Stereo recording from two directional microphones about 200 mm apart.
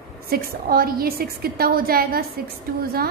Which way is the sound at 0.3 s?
45° right (ahead or behind).